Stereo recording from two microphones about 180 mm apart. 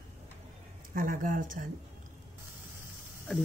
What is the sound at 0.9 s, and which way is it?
Speech, 50° right (ahead or behind).